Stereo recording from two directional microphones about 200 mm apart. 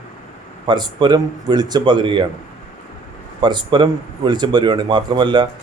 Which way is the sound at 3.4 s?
20° right (ahead or behind).